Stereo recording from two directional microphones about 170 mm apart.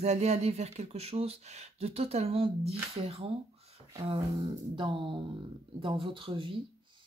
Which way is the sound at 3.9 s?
25° right (ahead or behind).